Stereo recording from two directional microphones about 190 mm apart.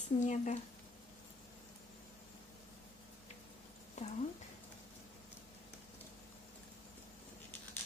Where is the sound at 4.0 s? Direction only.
35° left (ahead or behind).